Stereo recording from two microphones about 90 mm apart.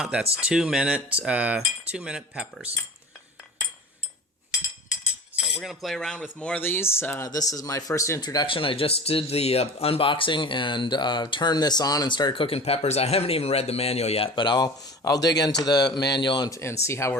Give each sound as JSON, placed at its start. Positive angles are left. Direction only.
{"t": 0.0, "sound": "speech", "side_deg": -10}
{"t": 5.5, "sound": "cutlery", "side_deg": 0}
{"t": 6.6, "sound": "speech", "side_deg": 25}
{"t": 7.3, "sound": "speech", "side_deg": 45}
{"t": 8.2, "sound": "speech", "side_deg": 50}
{"t": 8.4, "sound": "speech", "side_deg": 75}
{"t": 16.5, "sound": "speech", "side_deg": 30}